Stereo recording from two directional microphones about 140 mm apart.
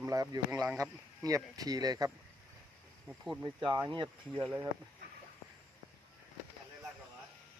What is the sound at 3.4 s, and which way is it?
Speech, 35° right (ahead or behind).